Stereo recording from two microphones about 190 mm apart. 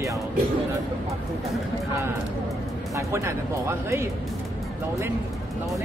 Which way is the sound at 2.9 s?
15° right (ahead or behind).